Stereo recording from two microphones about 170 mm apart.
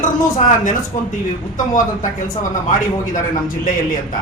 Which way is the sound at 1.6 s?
50° left (ahead or behind).